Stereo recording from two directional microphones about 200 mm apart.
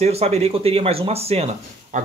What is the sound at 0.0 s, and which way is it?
Speech, 30° right (ahead or behind).